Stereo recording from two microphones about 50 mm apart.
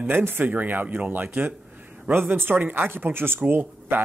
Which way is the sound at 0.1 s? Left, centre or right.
Right.